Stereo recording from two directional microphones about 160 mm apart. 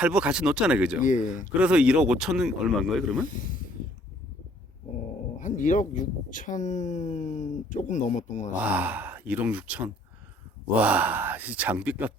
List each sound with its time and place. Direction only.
0.0 s speech: 5° right (ahead or behind)
1.0 s speech: 55° left (ahead or behind)
1.5 s speech: 5° right (ahead or behind)
3.2 s speech: 55° left (ahead or behind)
5.4 s dog: 50° left (ahead or behind)
5.9 s speech: 55° left (ahead or behind)
8.6 s speech: 10° right (ahead or behind)